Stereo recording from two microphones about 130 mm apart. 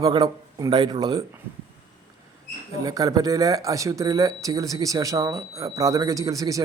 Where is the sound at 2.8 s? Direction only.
30° right (ahead or behind).